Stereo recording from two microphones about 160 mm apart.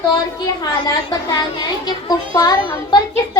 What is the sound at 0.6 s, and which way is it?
A child's voice, 25° left (ahead or behind).